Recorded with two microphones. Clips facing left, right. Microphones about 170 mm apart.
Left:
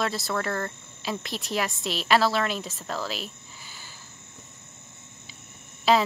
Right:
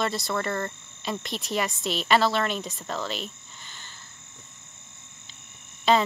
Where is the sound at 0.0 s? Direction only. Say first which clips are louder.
Even; centre (ahead or behind).